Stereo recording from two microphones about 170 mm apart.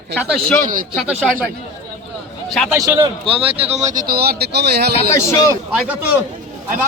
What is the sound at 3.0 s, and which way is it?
Speech, 30° right (ahead or behind).